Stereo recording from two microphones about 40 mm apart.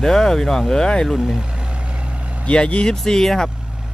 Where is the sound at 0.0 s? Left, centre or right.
Centre.